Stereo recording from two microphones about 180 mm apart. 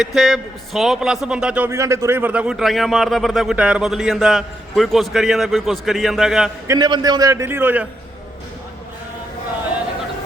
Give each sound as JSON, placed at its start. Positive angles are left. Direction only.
{"t": 0.0, "sound": "a man's voice", "side_deg": 0}
{"t": 6.7, "sound": "a man's voice", "side_deg": -25}